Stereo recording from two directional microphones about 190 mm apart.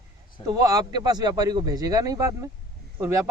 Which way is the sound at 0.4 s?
20° right (ahead or behind).